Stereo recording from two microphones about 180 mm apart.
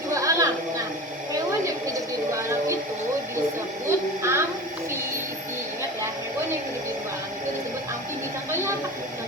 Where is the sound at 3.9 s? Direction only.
15° right (ahead or behind).